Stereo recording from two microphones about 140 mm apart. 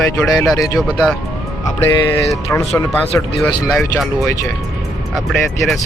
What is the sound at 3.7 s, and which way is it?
Speech, centre (ahead or behind).